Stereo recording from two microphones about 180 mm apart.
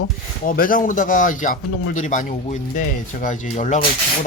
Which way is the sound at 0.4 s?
50° left (ahead or behind).